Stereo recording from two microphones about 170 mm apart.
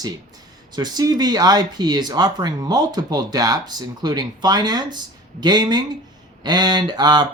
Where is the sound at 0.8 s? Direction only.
25° right (ahead or behind).